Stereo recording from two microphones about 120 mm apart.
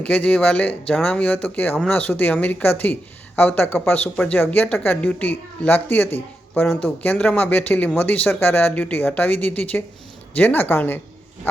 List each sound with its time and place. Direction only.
0.0 s speech: 10° left (ahead or behind)